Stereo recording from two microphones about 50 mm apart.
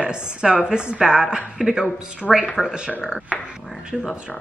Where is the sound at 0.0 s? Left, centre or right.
Centre.